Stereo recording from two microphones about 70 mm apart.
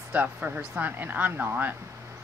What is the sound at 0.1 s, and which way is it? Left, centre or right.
Speech, right.